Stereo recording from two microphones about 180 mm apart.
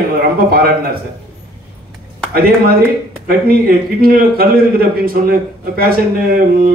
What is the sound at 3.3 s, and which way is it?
A man's voice, 55° right (ahead or behind).